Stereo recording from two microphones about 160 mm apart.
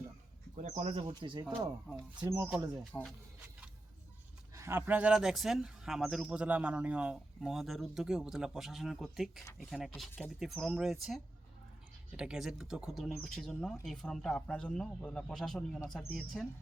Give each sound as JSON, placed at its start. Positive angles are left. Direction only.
{"t": 0.5, "sound": "speech", "side_deg": -50}
{"t": 1.2, "sound": "speech", "side_deg": -30}
{"t": 2.2, "sound": "speech", "side_deg": -15}
{"t": 4.5, "sound": "speech", "side_deg": -15}